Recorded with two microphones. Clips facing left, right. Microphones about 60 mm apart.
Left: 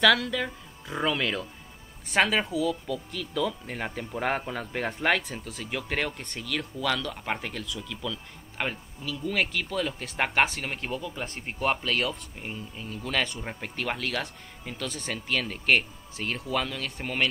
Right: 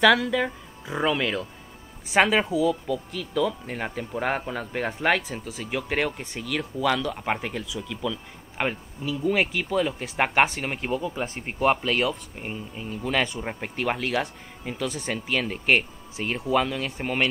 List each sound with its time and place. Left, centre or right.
0.0 s speech: centre